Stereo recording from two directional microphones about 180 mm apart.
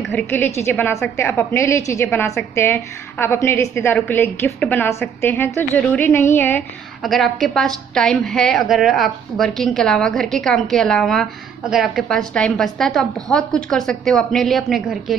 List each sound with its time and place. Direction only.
0.3 s a woman's voice: 15° left (ahead or behind)
7.0 s a woman's voice: centre (ahead or behind)